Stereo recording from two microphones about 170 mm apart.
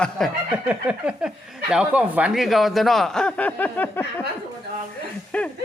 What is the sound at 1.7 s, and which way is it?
A man's voice, 5° right (ahead or behind).